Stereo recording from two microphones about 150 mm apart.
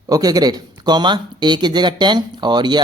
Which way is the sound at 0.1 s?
25° right (ahead or behind).